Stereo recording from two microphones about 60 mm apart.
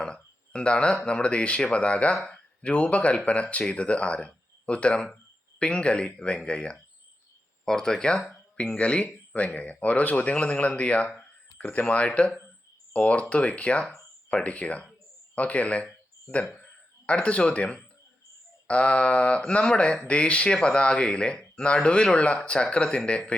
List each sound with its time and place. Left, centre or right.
0.0 s speech: centre